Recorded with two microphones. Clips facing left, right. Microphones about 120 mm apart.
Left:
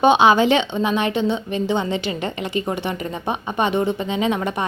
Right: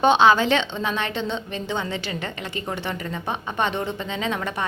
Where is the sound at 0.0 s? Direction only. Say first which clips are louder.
Left 3 dB; 15° left (ahead or behind).